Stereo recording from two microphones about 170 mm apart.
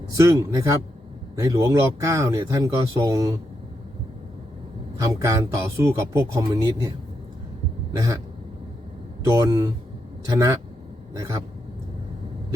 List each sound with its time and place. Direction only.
0.2 s speech: 20° right (ahead or behind)
4.9 s speech: 20° right (ahead or behind)
7.9 s speech: 20° right (ahead or behind)
9.2 s speech: 20° right (ahead or behind)